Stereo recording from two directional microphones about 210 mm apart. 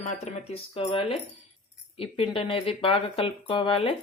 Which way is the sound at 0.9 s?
25° left (ahead or behind).